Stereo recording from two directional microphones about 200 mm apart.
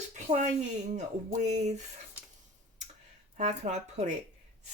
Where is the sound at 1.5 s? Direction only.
35° right (ahead or behind).